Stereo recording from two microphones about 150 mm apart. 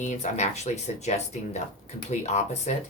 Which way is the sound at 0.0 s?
50° left (ahead or behind).